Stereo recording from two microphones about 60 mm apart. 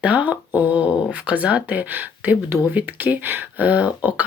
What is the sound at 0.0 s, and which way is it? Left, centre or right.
Speech, right.